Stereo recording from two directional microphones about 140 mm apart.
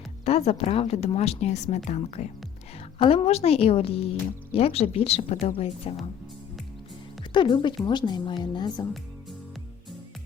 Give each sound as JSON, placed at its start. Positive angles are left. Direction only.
{"t": 0.3, "sound": "a woman's voice", "side_deg": 45}
{"t": 7.3, "sound": "a woman's voice", "side_deg": 35}